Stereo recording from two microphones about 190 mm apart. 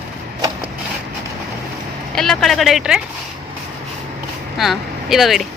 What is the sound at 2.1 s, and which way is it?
Speech, centre (ahead or behind).